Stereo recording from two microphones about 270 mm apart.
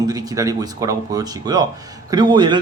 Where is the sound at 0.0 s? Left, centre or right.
Centre.